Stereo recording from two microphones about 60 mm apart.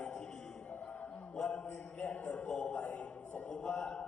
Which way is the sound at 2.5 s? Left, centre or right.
Centre.